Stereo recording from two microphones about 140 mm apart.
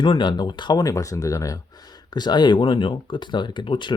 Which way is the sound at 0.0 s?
35° left (ahead or behind).